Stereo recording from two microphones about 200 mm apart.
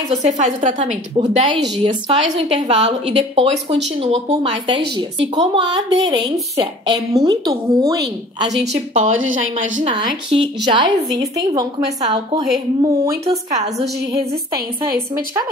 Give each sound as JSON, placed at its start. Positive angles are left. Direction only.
{"t": 0.1, "sound": "a woman's voice", "side_deg": -35}
{"t": 9.0, "sound": "a woman's voice", "side_deg": -90}
{"t": 9.8, "sound": "a woman's voice", "side_deg": -25}
{"t": 15.0, "sound": "a woman's voice", "side_deg": -15}